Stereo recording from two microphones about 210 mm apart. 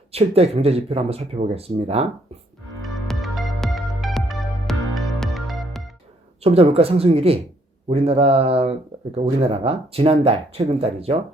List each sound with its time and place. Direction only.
0.1 s speech: 30° right (ahead or behind)
2.8 s music: centre (ahead or behind)
6.4 s speech: 30° right (ahead or behind)